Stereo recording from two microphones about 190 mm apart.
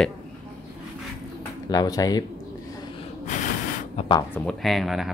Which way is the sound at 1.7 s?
20° left (ahead or behind).